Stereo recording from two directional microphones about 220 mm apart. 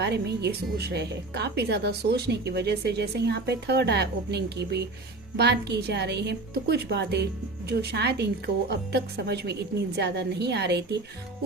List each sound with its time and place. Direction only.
0.0 s a woman's voice: 50° right (ahead or behind)